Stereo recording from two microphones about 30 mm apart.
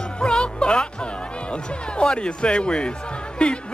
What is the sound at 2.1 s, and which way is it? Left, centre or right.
Speech, left.